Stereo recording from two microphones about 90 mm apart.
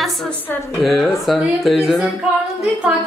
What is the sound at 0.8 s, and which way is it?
Speech, centre (ahead or behind).